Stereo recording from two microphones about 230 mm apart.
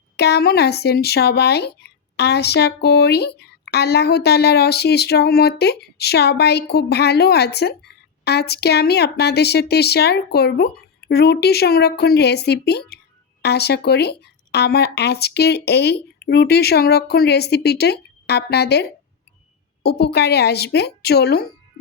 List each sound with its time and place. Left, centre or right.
0.2 s speech: left